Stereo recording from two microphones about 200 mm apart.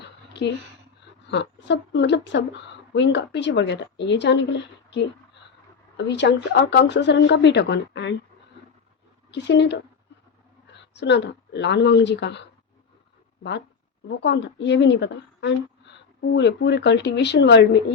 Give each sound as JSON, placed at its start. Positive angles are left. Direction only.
{"t": 1.3, "sound": "a woman's voice", "side_deg": 60}
{"t": 6.1, "sound": "a woman's voice", "side_deg": 60}
{"t": 9.3, "sound": "a woman's voice", "side_deg": 60}
{"t": 14.1, "sound": "a woman's voice", "side_deg": 60}